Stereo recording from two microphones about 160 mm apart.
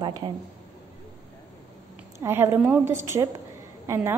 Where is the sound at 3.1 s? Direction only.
15° right (ahead or behind).